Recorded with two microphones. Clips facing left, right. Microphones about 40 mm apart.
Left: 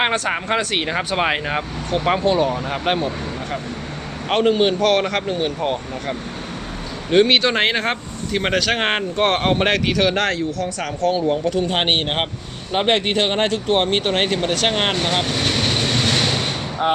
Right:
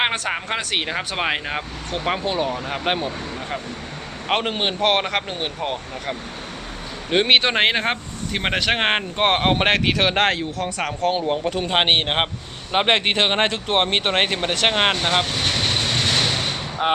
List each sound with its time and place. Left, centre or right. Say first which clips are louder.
0.0 s speech: left 3 dB; centre
4.3 s speech: left 6 dB; right
5.6 s speech: left 4 dB; centre
7.1 s speech: left 2 dB; right
9.2 s speech: even; right
12.7 s speech: even; right
14.7 s speech: right 1 dB; right
15.4 s vehicle: left 2 dB; centre
16.8 s speech: left 1 dB; right